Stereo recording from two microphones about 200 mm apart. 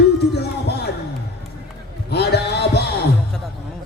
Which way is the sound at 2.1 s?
55° left (ahead or behind).